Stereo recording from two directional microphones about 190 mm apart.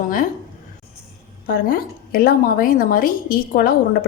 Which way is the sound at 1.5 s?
50° left (ahead or behind).